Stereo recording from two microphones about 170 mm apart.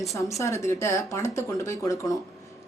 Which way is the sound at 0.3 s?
15° left (ahead or behind).